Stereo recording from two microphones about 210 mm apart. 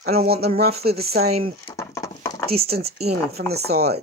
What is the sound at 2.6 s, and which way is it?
Speech, 45° right (ahead or behind).